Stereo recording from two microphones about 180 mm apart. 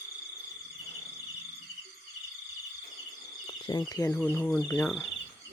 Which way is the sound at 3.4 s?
25° left (ahead or behind).